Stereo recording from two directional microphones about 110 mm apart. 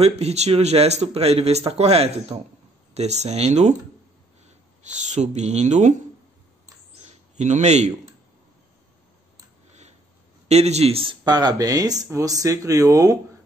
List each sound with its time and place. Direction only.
0.0 s speech: 75° right (ahead or behind)
2.9 s speech: 85° right
4.9 s speech: 90° right
7.0 s a sound: 90° right
9.7 s a sound: 90° right
10.5 s speech: 75° right (ahead or behind); by 11.1 s 60° right (ahead or behind)
11.2 s speech: 35° right (ahead or behind)